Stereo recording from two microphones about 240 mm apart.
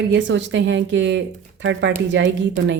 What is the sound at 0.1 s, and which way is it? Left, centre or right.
A woman's voice, right.